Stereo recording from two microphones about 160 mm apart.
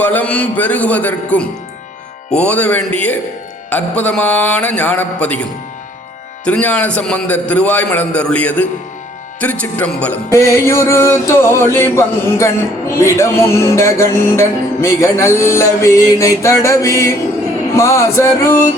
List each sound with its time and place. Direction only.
0.0 s music: 10° left (ahead or behind)